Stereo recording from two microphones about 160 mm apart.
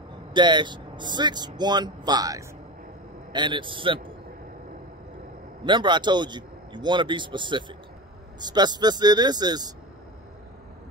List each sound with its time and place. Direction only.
0.3 s a man's voice: 30° right (ahead or behind)
5.7 s speech: 30° right (ahead or behind)